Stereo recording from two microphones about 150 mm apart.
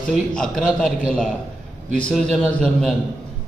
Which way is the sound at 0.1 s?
Centre (ahead or behind).